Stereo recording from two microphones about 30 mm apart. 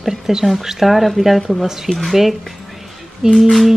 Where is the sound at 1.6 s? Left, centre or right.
Centre.